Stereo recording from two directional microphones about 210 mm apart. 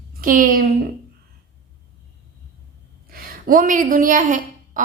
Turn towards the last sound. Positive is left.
turn(degrees=-40)  # may be behind; listen again after turning